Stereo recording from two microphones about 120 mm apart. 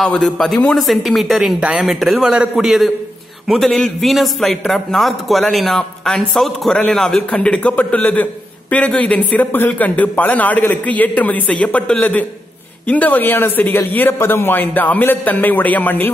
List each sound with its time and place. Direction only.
0.0 s a man's voice: 5° left (ahead or behind)